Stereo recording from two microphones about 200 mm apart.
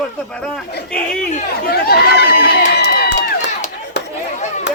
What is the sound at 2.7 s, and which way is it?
Run, 50° left (ahead or behind).